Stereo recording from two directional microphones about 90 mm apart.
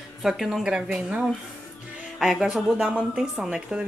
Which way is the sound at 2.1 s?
5° right (ahead or behind).